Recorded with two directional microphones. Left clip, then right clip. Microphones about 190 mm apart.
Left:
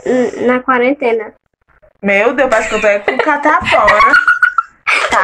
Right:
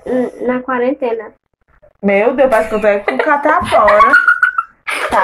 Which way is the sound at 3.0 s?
45° left (ahead or behind).